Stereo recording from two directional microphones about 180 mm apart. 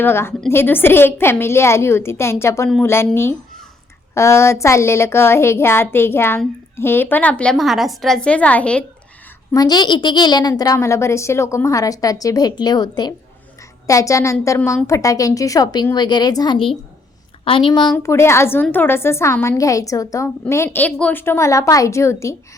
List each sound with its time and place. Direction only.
0.0 s a woman's voice: 15° left (ahead or behind)
9.5 s a woman's voice: 20° left (ahead or behind)
13.6 s a sound: 20° left (ahead or behind)
14.4 s a woman's voice: 15° left (ahead or behind)
17.9 s a woman's voice: 15° left (ahead or behind)